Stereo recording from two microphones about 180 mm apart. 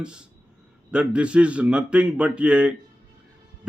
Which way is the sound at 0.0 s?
5° right (ahead or behind).